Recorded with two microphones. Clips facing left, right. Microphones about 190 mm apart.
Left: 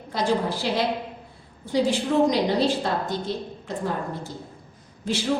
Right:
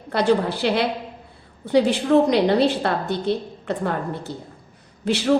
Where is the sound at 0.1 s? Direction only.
65° right (ahead or behind).